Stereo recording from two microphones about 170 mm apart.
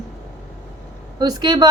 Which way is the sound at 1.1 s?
25° right (ahead or behind).